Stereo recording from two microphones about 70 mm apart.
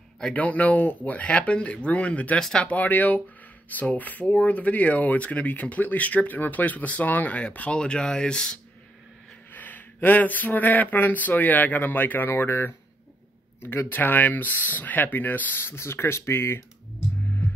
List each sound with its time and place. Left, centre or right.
0.2 s speech: left
9.5 s speech: left